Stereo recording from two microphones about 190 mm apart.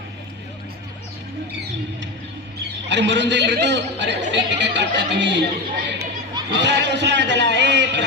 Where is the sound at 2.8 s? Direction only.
65° right (ahead or behind).